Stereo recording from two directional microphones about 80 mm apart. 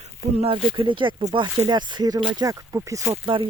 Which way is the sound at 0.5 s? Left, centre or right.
Right.